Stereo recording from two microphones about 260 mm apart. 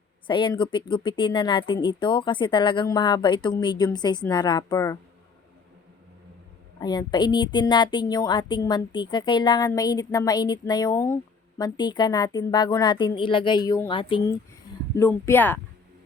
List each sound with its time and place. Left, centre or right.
0.3 s a woman's voice: centre
6.7 s a woman's voice: centre